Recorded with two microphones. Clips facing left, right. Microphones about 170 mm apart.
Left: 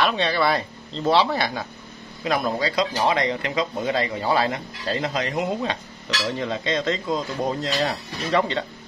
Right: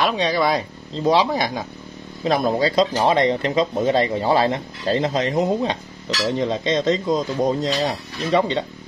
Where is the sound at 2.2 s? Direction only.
30° right (ahead or behind).